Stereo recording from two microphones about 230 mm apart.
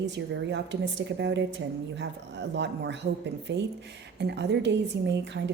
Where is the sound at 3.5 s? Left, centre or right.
Right.